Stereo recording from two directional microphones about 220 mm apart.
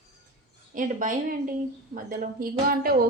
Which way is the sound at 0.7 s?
35° right (ahead or behind).